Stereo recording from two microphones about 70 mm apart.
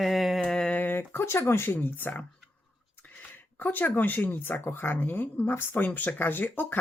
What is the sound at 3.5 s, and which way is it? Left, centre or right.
Speech, left.